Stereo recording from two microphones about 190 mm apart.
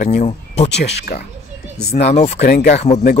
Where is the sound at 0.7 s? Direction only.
65° left (ahead or behind).